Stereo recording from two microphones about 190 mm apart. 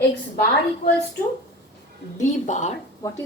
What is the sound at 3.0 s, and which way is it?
Speech, 15° left (ahead or behind).